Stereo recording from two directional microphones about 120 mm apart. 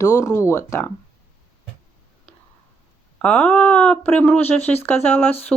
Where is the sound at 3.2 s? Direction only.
10° left (ahead or behind).